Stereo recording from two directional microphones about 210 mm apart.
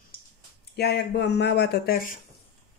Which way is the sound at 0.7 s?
50° left (ahead or behind).